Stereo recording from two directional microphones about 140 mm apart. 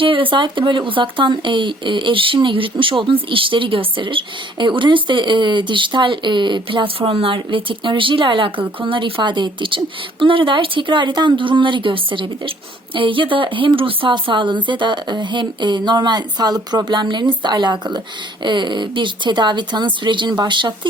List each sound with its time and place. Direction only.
0.0 s speech: 40° right (ahead or behind)